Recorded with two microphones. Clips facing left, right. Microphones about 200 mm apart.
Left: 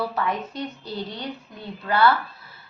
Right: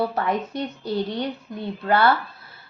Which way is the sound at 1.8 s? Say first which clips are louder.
Even; 45° right (ahead or behind).